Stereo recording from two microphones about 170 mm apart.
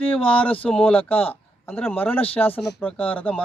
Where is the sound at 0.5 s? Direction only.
5° left (ahead or behind).